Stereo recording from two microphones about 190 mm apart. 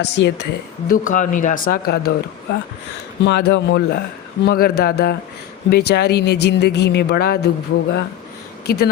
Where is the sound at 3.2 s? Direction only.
60° left (ahead or behind).